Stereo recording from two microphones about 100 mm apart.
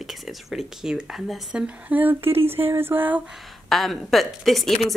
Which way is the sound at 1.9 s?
20° right (ahead or behind).